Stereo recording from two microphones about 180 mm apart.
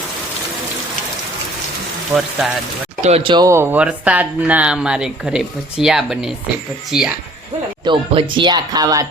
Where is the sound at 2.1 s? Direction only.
Centre (ahead or behind).